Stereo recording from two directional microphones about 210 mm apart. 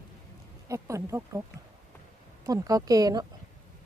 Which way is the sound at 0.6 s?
15° right (ahead or behind).